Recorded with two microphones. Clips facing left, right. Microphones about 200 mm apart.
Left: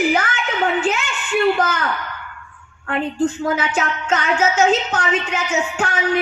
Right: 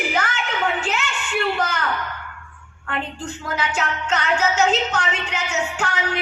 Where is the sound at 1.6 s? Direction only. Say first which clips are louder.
Left 4 dB; 55° left (ahead or behind).